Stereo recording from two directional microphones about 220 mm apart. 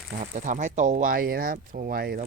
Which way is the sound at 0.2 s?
35° right (ahead or behind).